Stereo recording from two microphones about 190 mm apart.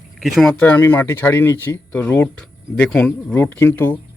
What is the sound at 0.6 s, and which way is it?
A man's voice, 10° left (ahead or behind).